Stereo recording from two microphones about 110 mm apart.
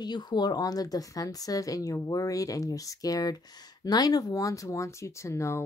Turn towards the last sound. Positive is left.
turn(degrees=25)  # may be behind; listen again after turning